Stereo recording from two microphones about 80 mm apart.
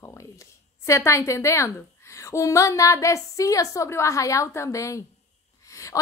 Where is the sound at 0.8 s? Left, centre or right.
Left.